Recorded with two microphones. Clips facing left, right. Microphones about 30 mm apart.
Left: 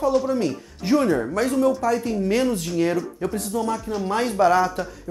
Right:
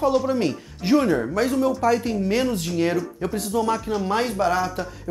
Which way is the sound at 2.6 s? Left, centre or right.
Centre.